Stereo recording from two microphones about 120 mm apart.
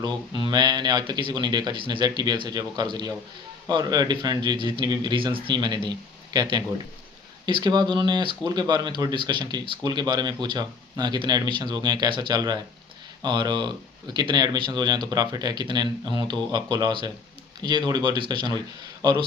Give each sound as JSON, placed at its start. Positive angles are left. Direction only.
{"t": 0.0, "sound": "speech", "side_deg": -35}